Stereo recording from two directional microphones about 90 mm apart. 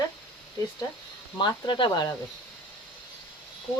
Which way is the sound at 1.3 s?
60° left (ahead or behind).